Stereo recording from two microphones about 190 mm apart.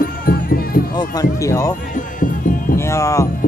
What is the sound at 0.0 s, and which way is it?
Music, 50° left (ahead or behind).